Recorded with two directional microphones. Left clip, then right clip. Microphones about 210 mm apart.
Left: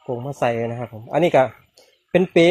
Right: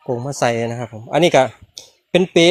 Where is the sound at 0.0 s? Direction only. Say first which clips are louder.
Right 3 dB; 35° right (ahead or behind).